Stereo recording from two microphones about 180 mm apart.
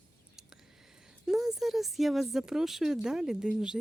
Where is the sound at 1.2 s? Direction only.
Centre (ahead or behind).